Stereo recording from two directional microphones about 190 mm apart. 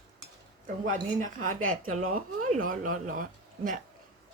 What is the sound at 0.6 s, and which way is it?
Speech, 45° right (ahead or behind).